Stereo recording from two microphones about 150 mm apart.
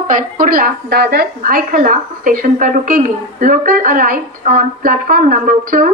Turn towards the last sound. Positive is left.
turn(degrees=-65)  # may be behind; listen again after turning